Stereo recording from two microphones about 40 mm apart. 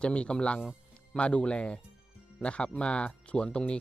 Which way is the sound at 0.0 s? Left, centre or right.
Left.